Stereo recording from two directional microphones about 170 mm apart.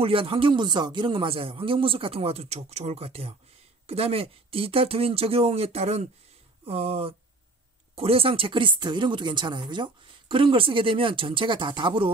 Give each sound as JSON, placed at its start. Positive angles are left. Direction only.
{"t": 0.0, "sound": "speech", "side_deg": -30}